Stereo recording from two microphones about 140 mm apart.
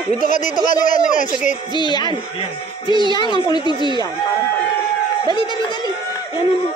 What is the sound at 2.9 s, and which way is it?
Speech, 35° right (ahead or behind).